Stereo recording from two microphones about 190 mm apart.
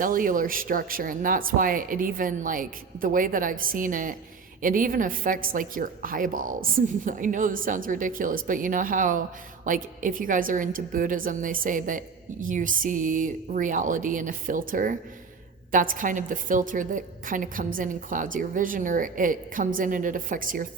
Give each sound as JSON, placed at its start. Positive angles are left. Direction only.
{"t": 0.0, "sound": "a woman's voice", "side_deg": -45}